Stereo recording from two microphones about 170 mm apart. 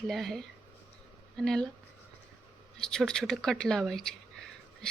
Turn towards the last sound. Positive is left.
turn(degrees=5)  # may be behind; listen again after turning